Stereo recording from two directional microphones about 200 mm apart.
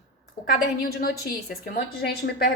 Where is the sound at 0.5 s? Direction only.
50° left (ahead or behind).